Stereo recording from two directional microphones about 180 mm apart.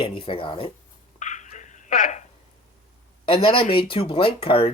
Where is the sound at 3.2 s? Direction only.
30° left (ahead or behind).